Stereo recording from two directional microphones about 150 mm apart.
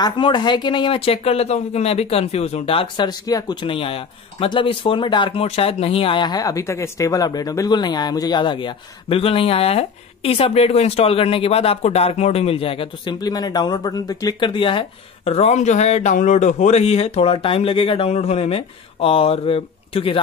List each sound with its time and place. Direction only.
0.0 s speech: 30° left (ahead or behind)